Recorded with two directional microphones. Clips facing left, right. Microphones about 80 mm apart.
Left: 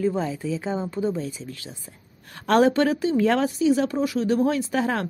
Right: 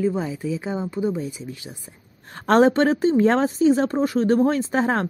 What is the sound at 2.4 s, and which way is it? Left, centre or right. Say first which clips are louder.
Speech: right 2 dB; right.